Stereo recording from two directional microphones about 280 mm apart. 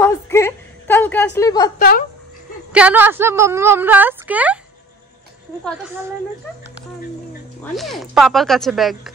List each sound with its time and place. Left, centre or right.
0.0 s a sound: centre
1.8 s speech: left
2.7 s a woman's voice: centre
7.7 s speech: centre